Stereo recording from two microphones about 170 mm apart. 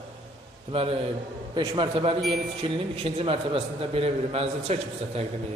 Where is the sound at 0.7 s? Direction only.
35° right (ahead or behind).